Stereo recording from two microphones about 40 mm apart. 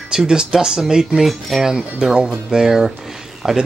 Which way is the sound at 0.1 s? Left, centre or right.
Centre.